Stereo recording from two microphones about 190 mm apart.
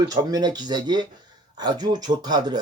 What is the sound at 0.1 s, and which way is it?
Speech, 20° right (ahead or behind).